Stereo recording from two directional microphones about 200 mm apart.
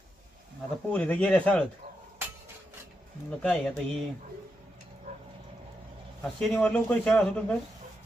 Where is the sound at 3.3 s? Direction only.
5° left (ahead or behind).